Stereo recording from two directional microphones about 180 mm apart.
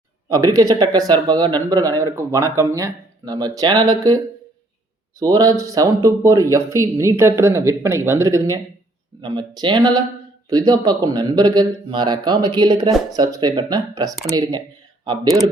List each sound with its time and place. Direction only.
0.3 s speech: 20° right (ahead or behind)
5.2 s speech: 20° right (ahead or behind)